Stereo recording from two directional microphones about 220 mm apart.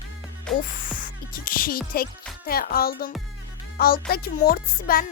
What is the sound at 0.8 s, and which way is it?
Music, 35° left (ahead or behind).